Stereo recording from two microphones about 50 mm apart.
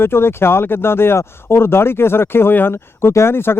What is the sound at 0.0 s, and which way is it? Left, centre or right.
Speech, left.